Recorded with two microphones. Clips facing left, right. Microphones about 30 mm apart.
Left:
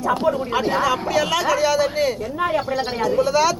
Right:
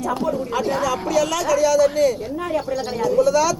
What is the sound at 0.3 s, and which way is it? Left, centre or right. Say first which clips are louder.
A woman's voice: left 2 dB; left.